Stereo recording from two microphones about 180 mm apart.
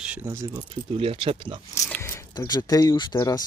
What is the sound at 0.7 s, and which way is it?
Speech, 30° right (ahead or behind).